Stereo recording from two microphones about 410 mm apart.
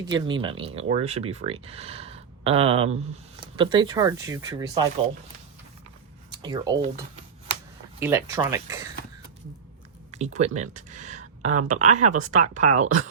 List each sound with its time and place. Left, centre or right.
0.0 s speech: centre
6.3 s speech: centre
7.9 s speech: centre
10.2 s speech: centre